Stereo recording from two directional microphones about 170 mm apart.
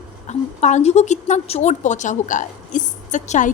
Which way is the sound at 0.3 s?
40° left (ahead or behind).